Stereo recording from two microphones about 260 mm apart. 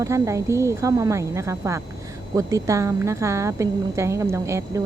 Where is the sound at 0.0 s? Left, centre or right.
Centre.